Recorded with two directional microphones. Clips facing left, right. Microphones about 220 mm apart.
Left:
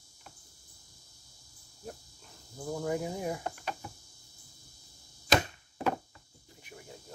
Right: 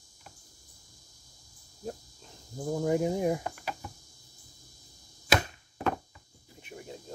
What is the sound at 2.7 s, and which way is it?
Speech, 20° right (ahead or behind).